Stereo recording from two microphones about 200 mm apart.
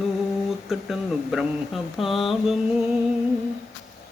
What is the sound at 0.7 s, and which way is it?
Mantra, centre (ahead or behind).